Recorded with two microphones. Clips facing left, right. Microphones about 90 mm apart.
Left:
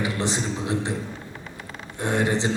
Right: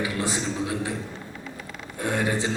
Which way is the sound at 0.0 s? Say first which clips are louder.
Left 1 dB; 25° left (ahead or behind).